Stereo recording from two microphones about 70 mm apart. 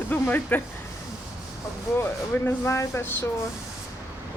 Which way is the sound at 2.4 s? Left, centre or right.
Left.